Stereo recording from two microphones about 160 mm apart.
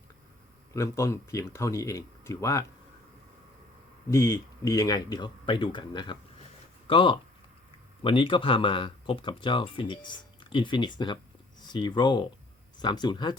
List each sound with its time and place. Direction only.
0.7 s speech: 20° left (ahead or behind)
4.1 s speech: 20° left (ahead or behind)